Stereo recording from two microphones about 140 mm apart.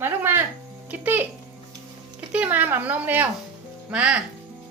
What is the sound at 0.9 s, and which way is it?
Speech, 15° right (ahead or behind).